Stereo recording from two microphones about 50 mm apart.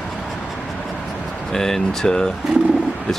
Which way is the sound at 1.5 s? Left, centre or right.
Centre.